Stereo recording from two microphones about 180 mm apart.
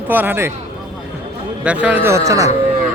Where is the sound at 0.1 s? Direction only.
10° right (ahead or behind).